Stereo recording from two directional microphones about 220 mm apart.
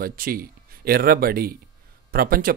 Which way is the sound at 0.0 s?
40° right (ahead or behind).